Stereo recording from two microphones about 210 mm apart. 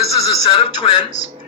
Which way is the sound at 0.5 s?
30° left (ahead or behind).